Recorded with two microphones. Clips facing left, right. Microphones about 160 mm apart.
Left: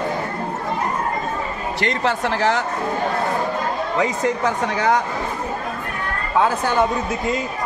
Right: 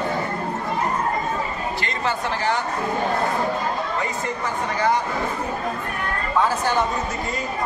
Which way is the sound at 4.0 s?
90° left.